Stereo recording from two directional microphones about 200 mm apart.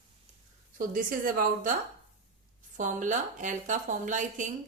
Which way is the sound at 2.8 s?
40° right (ahead or behind).